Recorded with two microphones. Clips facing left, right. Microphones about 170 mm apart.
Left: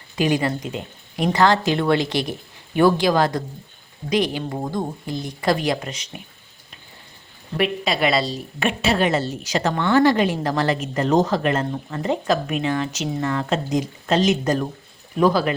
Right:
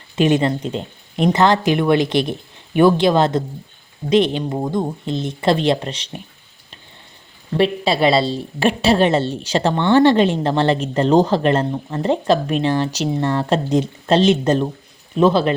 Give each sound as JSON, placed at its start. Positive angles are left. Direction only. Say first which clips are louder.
{"t": 0.2, "sound": "a woman's voice", "louder": "right 5 dB", "side_deg": -25}
{"t": 7.5, "sound": "a woman's voice", "louder": "right 5 dB", "side_deg": -30}